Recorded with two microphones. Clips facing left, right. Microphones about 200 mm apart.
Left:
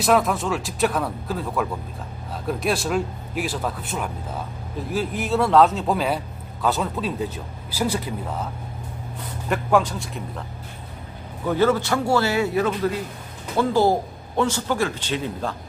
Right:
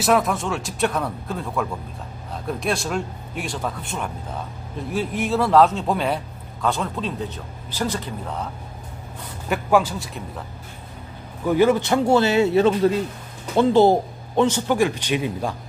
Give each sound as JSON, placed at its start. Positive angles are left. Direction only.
{"t": 0.0, "sound": "a man's voice", "side_deg": 0}
{"t": 9.5, "sound": "a man's voice", "side_deg": -5}
{"t": 11.4, "sound": "a man's voice", "side_deg": -15}